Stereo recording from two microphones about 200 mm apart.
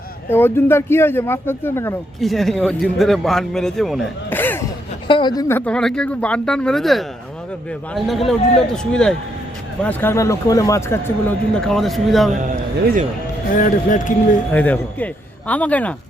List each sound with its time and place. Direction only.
0.3 s speech: 10° left (ahead or behind)
5.0 s speech: 25° left (ahead or behind); by 12.3 s centre (ahead or behind)
12.3 s a man's voice: 40° right (ahead or behind)
13.6 s speech: 40° left (ahead or behind)
14.5 s speech: 10° left (ahead or behind)